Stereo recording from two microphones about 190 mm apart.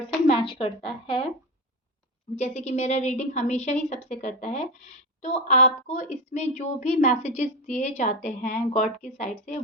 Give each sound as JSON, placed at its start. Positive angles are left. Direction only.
{"t": 0.3, "sound": "a woman's voice", "side_deg": 30}
{"t": 2.3, "sound": "a woman's voice", "side_deg": 35}